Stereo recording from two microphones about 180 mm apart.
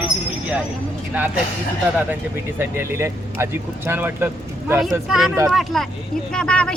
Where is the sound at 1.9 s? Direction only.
10° right (ahead or behind).